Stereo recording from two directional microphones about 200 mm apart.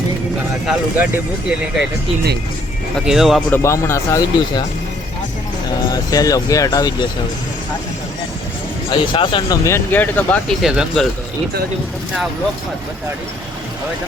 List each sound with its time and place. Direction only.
0.7 s speech: 5° right (ahead or behind)
3.1 s speech: centre (ahead or behind)
3.6 s speech: 15° left (ahead or behind)
5.9 s speech: 15° left (ahead or behind)
8.9 s speech: 25° left (ahead or behind); by 10.4 s 10° left (ahead or behind)
10.6 s speech: 5° right (ahead or behind)